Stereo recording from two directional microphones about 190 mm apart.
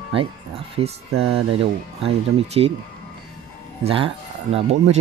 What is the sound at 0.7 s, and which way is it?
Speech, 30° right (ahead or behind).